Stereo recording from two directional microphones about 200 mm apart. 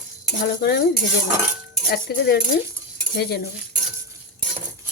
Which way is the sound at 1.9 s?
50° left (ahead or behind).